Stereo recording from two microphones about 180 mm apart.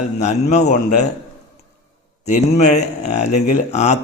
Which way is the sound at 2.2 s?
40° left (ahead or behind).